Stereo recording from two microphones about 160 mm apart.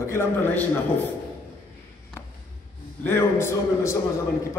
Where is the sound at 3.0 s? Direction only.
15° left (ahead or behind).